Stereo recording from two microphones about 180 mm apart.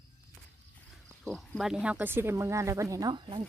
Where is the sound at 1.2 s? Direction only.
Centre (ahead or behind).